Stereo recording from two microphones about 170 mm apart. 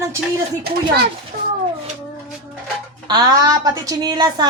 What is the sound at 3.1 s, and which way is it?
A woman's voice, 25° right (ahead or behind).